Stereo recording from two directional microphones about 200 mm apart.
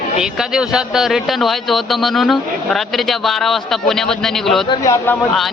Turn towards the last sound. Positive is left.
turn(degrees=15)  # may be behind; listen again after turning